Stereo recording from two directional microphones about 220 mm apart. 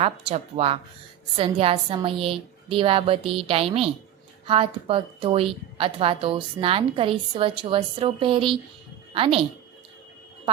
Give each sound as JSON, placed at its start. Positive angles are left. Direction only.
{"t": 0.0, "sound": "a woman's voice", "side_deg": -30}